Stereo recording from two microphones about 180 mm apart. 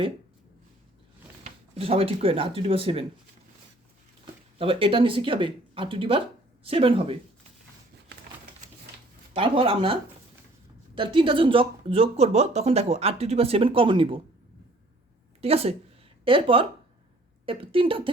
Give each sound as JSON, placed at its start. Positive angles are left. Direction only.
{"t": 1.8, "sound": "speech", "side_deg": -35}
{"t": 4.5, "sound": "speech", "side_deg": -30}
{"t": 9.3, "sound": "speech", "side_deg": -30}
{"t": 15.4, "sound": "speech", "side_deg": -35}